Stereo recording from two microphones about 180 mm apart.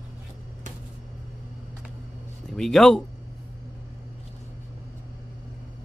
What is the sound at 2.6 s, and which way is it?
Speech, centre (ahead or behind).